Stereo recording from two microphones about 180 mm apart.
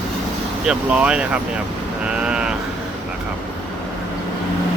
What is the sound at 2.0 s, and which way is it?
Vehicle, 5° right (ahead or behind).